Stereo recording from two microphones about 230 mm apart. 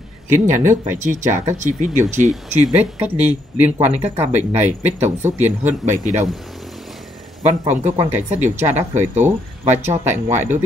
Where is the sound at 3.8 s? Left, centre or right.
Right.